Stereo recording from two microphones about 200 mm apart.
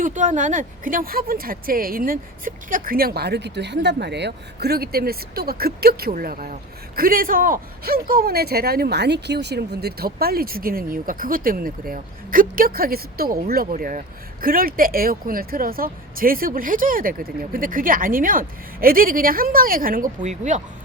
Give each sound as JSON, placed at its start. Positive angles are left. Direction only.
{"t": 0.0, "sound": "speech", "side_deg": -40}